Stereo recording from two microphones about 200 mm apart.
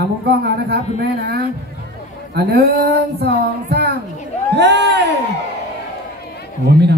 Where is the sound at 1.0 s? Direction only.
55° right (ahead or behind).